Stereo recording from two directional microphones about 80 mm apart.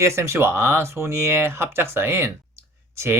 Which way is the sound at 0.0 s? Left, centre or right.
Right.